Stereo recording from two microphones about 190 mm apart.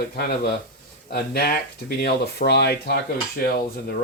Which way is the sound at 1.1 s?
55° left (ahead or behind).